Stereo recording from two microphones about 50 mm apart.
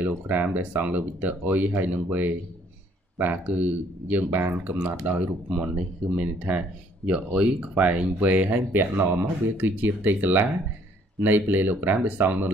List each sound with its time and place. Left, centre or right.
0.0 s speech: right
5.6 s speech: right